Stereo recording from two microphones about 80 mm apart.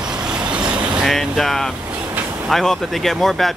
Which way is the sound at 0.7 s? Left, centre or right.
Centre.